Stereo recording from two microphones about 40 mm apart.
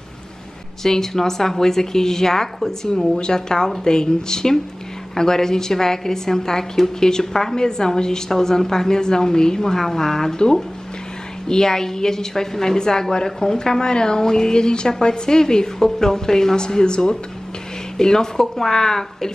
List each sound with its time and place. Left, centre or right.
0.8 s a woman's voice: centre